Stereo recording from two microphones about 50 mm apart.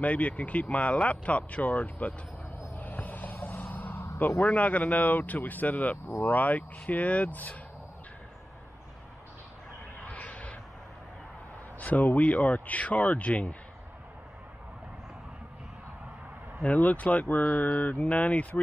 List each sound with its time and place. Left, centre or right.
0.0 s speech: left
2.8 s music: left
3.9 s a sound: left
4.6 s speech: left
9.9 s vehicle: left
11.8 s speech: left
16.6 s speech: left